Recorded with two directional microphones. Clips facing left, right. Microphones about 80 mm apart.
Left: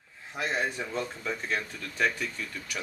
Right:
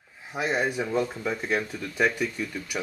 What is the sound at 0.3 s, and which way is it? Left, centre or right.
Speech, centre.